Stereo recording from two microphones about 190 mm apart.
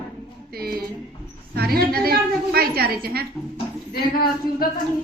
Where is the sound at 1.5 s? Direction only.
55° right (ahead or behind).